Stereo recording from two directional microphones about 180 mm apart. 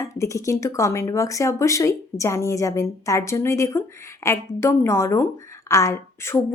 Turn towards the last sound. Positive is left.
turn(degrees=15)  # may be behind; listen again after turning